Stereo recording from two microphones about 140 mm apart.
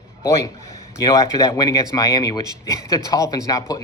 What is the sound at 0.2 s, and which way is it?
A man's voice, 20° left (ahead or behind).